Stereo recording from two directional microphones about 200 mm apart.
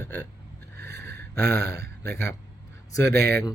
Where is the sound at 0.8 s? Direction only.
15° left (ahead or behind).